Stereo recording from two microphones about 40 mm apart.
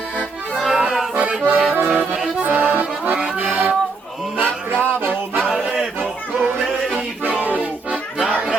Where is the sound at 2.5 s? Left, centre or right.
Right.